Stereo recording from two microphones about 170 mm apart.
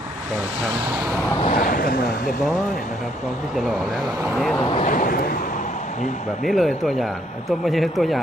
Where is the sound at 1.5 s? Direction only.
55° left (ahead or behind).